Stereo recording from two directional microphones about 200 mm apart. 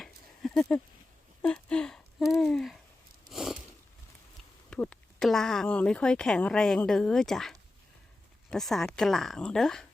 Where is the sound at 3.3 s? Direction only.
Centre (ahead or behind).